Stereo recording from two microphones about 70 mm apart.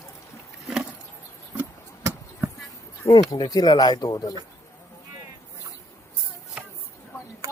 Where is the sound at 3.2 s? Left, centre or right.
Left.